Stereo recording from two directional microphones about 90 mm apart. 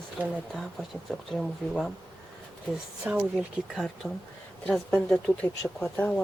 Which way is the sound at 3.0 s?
15° right (ahead or behind).